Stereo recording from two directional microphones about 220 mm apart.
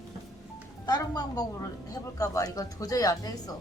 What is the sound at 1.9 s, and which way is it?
Music, 15° left (ahead or behind).